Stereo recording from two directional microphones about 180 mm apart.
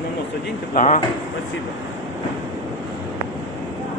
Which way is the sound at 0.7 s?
40° left (ahead or behind).